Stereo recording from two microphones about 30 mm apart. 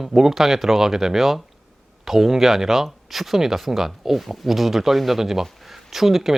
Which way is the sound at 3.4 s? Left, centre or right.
Centre.